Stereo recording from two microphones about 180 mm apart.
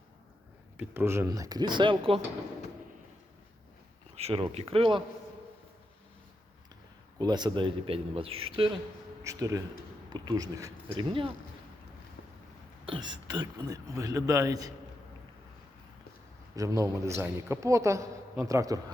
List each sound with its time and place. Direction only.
0.8 s speech: 15° right (ahead or behind); by 2.2 s 30° right (ahead or behind)
4.1 s speech: 35° right (ahead or behind)
7.2 s speech: 25° right (ahead or behind)
9.2 s speech: 20° right (ahead or behind)
12.8 s speech: 25° right (ahead or behind)
16.6 s a man's voice: 20° right (ahead or behind)